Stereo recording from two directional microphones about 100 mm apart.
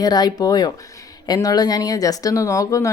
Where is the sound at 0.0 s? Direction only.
40° left (ahead or behind).